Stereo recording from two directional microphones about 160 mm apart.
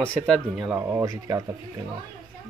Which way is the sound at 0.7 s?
20° right (ahead or behind).